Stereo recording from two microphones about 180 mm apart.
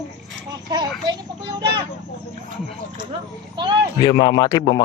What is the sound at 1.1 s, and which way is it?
Vehicle, 25° right (ahead or behind).